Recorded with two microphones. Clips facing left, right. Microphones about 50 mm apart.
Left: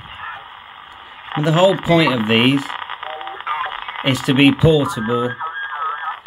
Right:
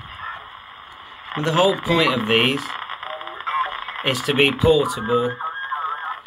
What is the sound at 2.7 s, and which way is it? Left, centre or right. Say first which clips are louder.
Radio: left 3 dB; left.